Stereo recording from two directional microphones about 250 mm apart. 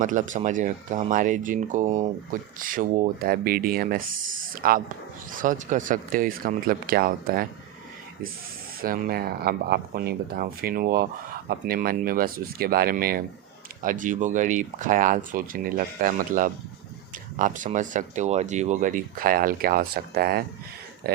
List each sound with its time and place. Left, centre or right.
0.0 s speech: right
8.8 s speech: right